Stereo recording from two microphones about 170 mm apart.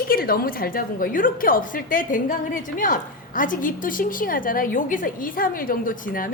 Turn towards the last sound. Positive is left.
turn(degrees=55)  # may be behind; listen again after turning